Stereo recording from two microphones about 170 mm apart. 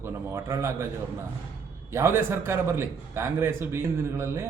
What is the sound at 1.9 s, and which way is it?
A man's voice, 15° right (ahead or behind).